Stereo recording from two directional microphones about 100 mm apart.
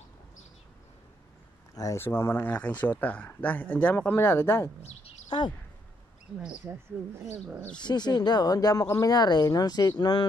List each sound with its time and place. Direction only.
1.8 s speech: 30° left (ahead or behind)
5.3 s speech: 50° left (ahead or behind)
6.9 s speech: 15° right (ahead or behind)
7.7 s speech: 45° left (ahead or behind)